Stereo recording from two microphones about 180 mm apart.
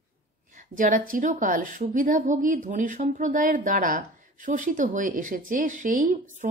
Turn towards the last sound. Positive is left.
turn(degrees=-50)  # may be behind; listen again after turning